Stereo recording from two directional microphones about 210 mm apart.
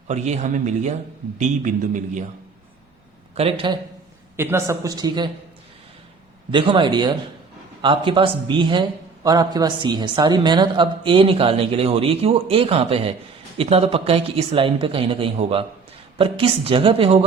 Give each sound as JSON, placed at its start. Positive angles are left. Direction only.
{"t": 0.1, "sound": "a man's voice", "side_deg": -35}
{"t": 3.3, "sound": "a man's voice", "side_deg": -25}
{"t": 4.4, "sound": "speech", "side_deg": -10}
{"t": 6.5, "sound": "a man's voice", "side_deg": -25}